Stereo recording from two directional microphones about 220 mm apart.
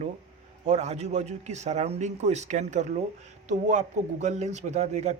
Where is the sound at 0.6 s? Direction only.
30° right (ahead or behind).